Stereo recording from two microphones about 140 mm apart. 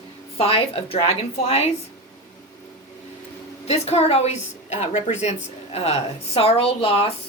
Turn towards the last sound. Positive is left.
turn(degrees=45)  # may be behind; listen again after turning